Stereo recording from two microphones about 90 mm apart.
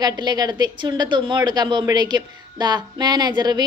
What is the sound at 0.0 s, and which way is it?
A woman's voice, 50° right (ahead or behind).